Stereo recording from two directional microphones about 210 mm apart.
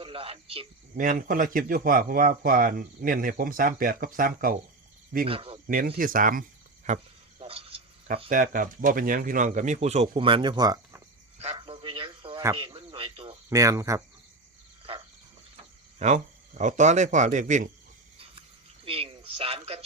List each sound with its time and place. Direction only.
0.0 s a man's voice: 25° right (ahead or behind)
0.9 s speech: 40° right (ahead or behind)
5.2 s speech: 25° right (ahead or behind)
5.6 s speech: 45° right (ahead or behind)
6.8 s a sound: 30° right (ahead or behind)
8.3 s speech: 40° right (ahead or behind); by 11.0 s 20° right (ahead or behind)
11.5 s a sound: 25° right (ahead or behind)
12.5 s speech: 25° right (ahead or behind)
13.5 s speech: 15° right (ahead or behind)
16.0 s speech: 35° right (ahead or behind)
18.9 s a sound: 25° right (ahead or behind)